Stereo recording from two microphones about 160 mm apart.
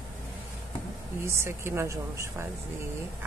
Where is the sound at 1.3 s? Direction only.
15° right (ahead or behind).